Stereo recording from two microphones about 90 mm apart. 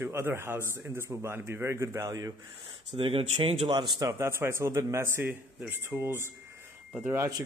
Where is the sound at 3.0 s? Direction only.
85° right.